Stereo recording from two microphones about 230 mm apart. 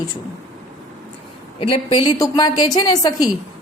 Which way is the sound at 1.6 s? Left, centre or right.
Centre.